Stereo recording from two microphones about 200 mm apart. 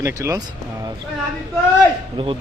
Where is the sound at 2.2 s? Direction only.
25° right (ahead or behind).